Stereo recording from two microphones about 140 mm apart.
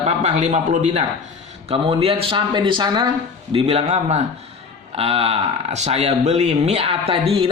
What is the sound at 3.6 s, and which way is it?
A man's voice, 50° right (ahead or behind).